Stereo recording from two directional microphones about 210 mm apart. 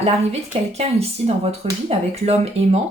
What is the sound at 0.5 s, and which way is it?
Speech, 30° right (ahead or behind).